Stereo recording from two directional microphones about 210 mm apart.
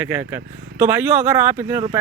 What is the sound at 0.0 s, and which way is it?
Speech, 10° right (ahead or behind).